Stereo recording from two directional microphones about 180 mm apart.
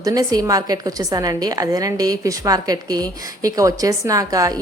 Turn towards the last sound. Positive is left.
turn(degrees=-20)  # may be behind; listen again after turning